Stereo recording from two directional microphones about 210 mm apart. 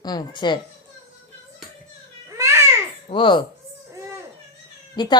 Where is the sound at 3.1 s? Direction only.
20° left (ahead or behind).